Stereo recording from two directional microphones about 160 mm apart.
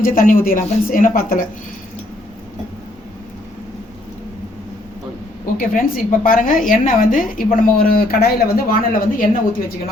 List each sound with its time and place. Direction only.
0.0 s a woman's voice: 60° left (ahead or behind)
5.5 s a woman's voice: 65° left (ahead or behind)